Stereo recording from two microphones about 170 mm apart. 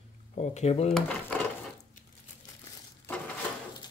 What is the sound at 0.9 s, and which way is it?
Speech, 5° left (ahead or behind).